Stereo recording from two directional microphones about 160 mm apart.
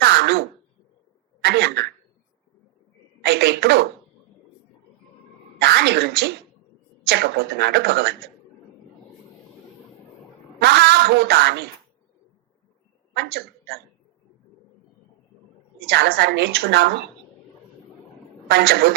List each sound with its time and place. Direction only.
0.0 s throat clearing: 90° right
1.5 s speech: 90° right
3.2 s speech: 90° right
5.6 s a woman's voice: 90° right
10.6 s a woman's voice: 90° right
13.1 s a woman's voice: 75° right (ahead or behind)
15.9 s a woman's voice: 80° right
18.4 s a woman's voice: 80° right